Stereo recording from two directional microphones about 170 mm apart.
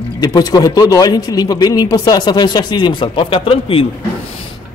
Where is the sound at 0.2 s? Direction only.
25° left (ahead or behind).